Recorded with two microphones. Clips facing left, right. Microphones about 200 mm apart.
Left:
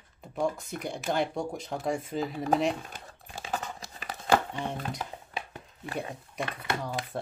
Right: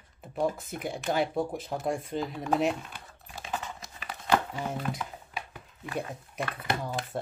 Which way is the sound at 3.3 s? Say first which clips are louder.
Left 1 dB; 35° left (ahead or behind).